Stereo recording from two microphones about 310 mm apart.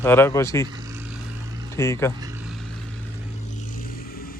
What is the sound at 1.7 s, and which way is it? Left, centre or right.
Speech, centre.